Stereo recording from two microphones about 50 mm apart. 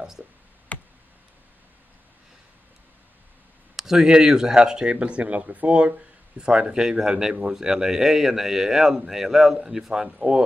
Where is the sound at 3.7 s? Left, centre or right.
Centre.